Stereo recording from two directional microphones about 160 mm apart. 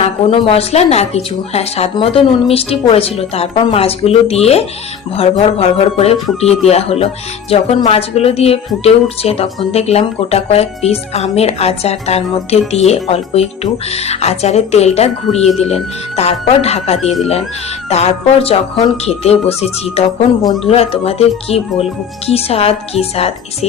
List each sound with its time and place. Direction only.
0.0 s speech: 35° left (ahead or behind)
17.0 s speech: centre (ahead or behind)
17.8 s speech: 40° left (ahead or behind)